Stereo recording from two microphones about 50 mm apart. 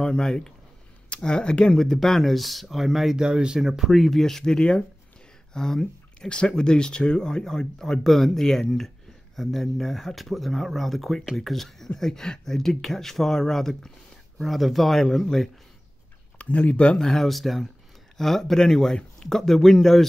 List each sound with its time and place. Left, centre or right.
0.0 s speech: centre
1.8 s speech: centre
3.2 s speech: centre
16.3 s speech: left
17.0 s speech: centre